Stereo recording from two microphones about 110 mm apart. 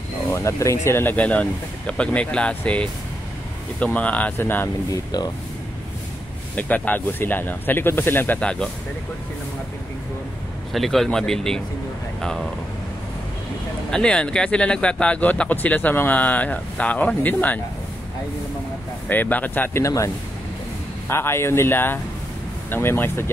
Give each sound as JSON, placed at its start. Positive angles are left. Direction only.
{"t": 0.3, "sound": "speech", "side_deg": 25}
{"t": 4.9, "sound": "speech", "side_deg": 40}
{"t": 6.5, "sound": "speech", "side_deg": 15}
{"t": 10.7, "sound": "speech", "side_deg": 0}
{"t": 13.8, "sound": "speech", "side_deg": 10}
{"t": 19.0, "sound": "speech", "side_deg": 15}
{"t": 19.8, "sound": "speech", "side_deg": 30}
{"t": 21.1, "sound": "speech", "side_deg": 25}